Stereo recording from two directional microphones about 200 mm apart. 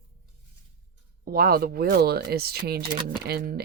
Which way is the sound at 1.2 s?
45° right (ahead or behind).